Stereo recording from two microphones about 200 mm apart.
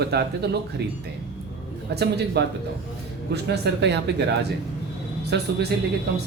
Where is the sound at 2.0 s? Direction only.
55° right (ahead or behind).